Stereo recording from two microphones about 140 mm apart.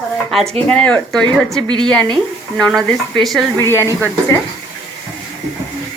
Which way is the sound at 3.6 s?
20° left (ahead or behind).